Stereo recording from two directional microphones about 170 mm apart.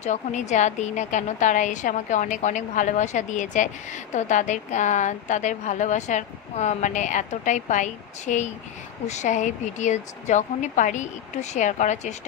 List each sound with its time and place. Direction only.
0.0 s a woman's voice: 45° left (ahead or behind)